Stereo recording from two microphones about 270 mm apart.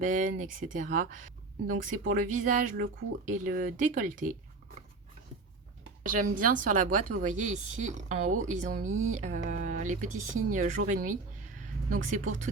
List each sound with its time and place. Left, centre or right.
0.0 s speech: right
6.1 s speech: right